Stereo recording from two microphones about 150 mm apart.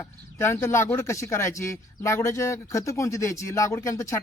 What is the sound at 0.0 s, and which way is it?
Speech, 15° left (ahead or behind).